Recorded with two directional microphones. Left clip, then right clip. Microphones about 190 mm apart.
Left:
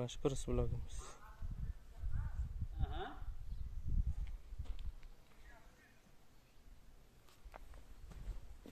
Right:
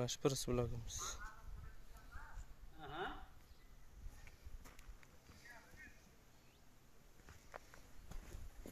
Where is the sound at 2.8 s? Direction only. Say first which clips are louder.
Right 1 dB; 20° left (ahead or behind).